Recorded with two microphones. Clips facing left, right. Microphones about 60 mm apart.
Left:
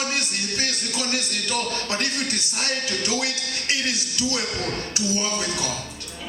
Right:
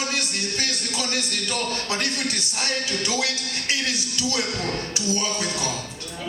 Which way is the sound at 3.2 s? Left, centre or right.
Left.